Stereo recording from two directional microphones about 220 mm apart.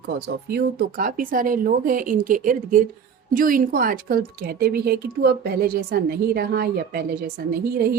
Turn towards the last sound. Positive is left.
turn(degrees=-45)  # may be behind; listen again after turning